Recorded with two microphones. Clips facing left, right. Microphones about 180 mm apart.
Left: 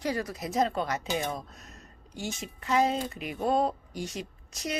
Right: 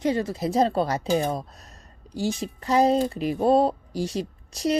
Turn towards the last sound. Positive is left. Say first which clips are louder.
# right 10 dB
turn(degrees=-35)  # may be behind; listen again after turning